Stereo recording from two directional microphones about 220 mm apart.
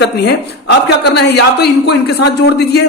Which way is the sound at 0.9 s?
50° left (ahead or behind).